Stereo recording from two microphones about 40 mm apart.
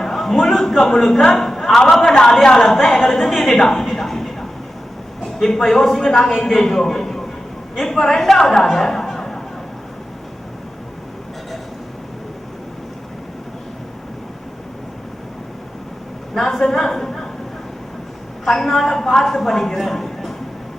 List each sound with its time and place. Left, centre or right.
0.0 s a man's voice: centre
1.4 s a sound: centre
1.9 s a woman's voice: centre
8.6 s a sound: centre
16.3 s a woman's voice: centre
18.4 s a woman's voice: centre